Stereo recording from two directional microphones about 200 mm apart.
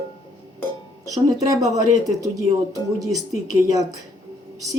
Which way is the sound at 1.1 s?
15° right (ahead or behind).